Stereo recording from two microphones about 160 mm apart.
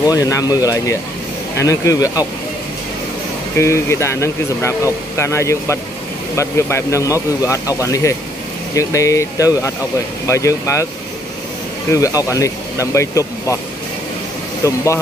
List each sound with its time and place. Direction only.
0.0 s speech: 20° left (ahead or behind)
3.5 s speech: 15° left (ahead or behind)
11.9 s speech: 20° left (ahead or behind)